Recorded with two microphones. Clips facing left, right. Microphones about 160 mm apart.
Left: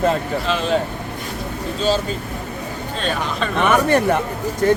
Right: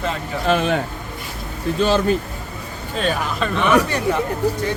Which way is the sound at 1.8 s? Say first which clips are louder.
Right 2 dB; 60° right (ahead or behind).